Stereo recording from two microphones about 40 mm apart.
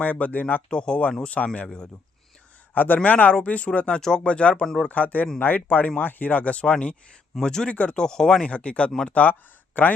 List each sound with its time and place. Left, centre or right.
0.0 s speech: left
0.7 s speech: left
1.6 s speech: left
2.7 s speech: left
4.9 s speech: left
7.4 s speech: centre
7.7 s speech: left
7.9 s speech: centre
8.4 s speech: left
9.0 s speech: left